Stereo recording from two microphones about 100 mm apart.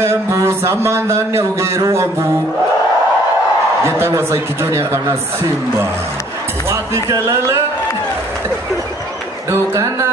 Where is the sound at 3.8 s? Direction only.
25° right (ahead or behind).